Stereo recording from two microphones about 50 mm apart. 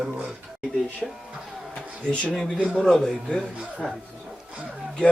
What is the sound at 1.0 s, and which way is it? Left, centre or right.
Speech, centre.